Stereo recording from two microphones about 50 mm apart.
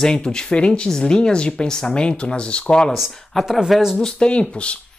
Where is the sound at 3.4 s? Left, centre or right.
Centre.